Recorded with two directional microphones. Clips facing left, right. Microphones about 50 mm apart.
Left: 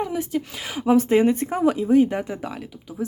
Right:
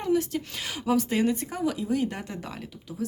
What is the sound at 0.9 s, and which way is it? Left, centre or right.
Speech, left.